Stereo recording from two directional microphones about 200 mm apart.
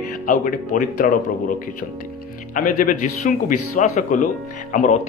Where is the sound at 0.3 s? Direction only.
40° left (ahead or behind).